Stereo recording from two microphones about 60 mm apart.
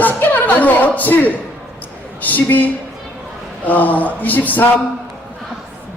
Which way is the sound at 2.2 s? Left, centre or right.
Left.